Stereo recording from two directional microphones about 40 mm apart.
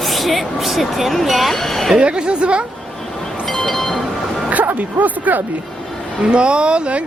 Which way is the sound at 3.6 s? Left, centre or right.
Centre.